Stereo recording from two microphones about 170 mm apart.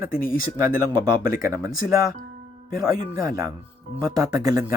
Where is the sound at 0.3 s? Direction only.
55° left (ahead or behind).